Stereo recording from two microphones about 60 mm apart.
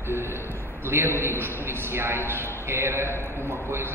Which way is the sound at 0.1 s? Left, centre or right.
Right.